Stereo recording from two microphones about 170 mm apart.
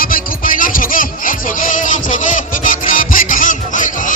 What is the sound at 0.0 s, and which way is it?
Music, 55° left (ahead or behind).